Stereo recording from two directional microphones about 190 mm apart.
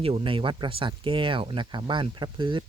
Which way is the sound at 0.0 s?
30° right (ahead or behind).